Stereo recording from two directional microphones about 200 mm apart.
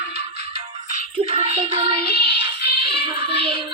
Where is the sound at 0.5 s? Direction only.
35° right (ahead or behind).